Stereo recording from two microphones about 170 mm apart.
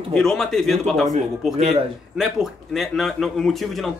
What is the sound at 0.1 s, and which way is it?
Speech, 5° left (ahead or behind).